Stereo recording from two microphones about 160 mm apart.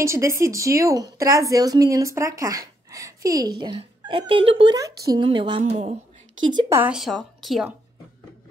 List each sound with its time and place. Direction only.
0.0 s a woman's voice: 20° right (ahead or behind); by 4.7 s 35° right (ahead or behind)
5.1 s a sound: 30° right (ahead or behind)
5.6 s a woman's voice: 45° right (ahead or behind)
6.7 s speech: 10° right (ahead or behind)
7.0 s a woman's voice: centre (ahead or behind)